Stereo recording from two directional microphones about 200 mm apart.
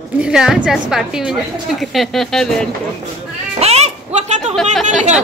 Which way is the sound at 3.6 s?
30° right (ahead or behind).